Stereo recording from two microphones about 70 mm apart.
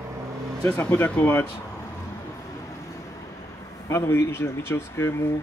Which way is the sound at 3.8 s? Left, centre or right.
Left.